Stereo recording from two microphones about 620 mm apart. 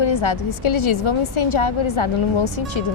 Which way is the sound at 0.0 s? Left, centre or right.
Left.